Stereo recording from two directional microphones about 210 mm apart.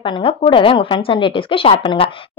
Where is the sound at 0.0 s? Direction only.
25° left (ahead or behind).